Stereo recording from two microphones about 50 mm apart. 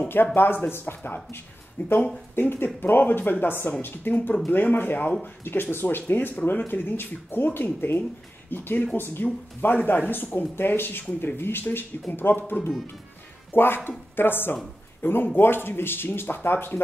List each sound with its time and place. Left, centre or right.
0.1 s speech: left